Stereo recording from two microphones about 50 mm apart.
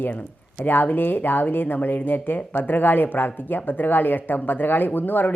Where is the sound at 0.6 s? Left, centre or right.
Left.